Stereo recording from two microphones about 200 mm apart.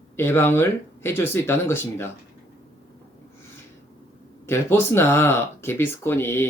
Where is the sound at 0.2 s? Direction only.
10° left (ahead or behind).